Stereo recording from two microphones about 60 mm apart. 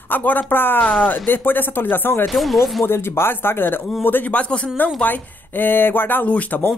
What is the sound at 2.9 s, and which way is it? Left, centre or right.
Speech, left.